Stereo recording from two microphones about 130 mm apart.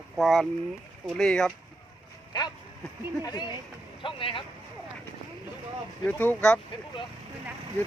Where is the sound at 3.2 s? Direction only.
35° left (ahead or behind).